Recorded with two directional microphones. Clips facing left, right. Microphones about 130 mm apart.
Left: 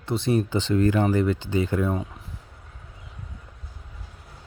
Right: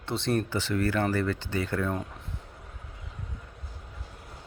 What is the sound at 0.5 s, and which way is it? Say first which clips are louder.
Speech: left 6 dB; 20° left (ahead or behind).